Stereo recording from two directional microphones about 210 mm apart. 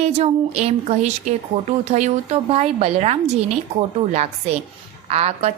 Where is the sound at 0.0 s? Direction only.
30° right (ahead or behind).